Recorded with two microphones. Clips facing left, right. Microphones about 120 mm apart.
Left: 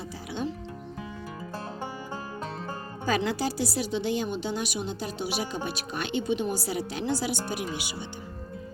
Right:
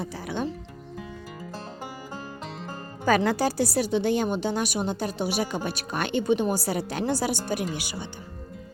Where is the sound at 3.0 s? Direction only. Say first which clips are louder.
Right 5 dB; 50° right (ahead or behind).